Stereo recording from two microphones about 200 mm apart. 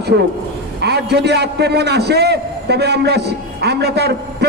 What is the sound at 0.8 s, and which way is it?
A man's voice, 55° right (ahead or behind).